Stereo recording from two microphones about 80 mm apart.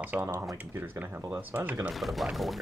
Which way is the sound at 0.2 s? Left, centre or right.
Right.